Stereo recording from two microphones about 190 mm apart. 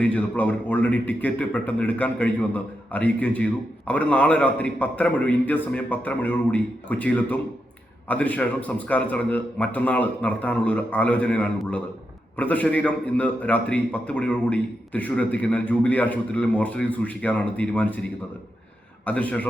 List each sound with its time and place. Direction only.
0.0 s a man's voice: 10° left (ahead or behind)